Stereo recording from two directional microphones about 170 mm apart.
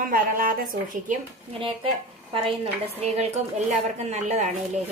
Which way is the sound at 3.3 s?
40° right (ahead or behind).